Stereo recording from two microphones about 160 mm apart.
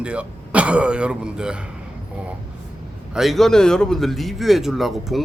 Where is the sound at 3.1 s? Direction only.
Centre (ahead or behind).